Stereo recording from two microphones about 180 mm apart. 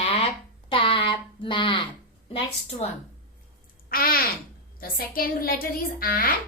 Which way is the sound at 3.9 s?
55° left (ahead or behind).